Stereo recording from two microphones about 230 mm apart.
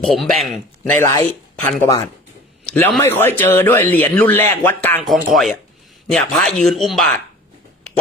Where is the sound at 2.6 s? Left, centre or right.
Centre.